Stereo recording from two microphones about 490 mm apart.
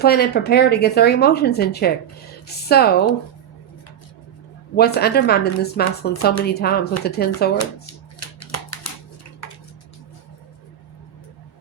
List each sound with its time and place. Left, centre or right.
0.0 s speech: centre
4.8 s speech: centre
8.2 s a sound: left
9.4 s dishes: left